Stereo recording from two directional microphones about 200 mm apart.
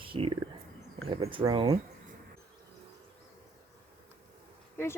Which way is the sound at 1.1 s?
25° right (ahead or behind).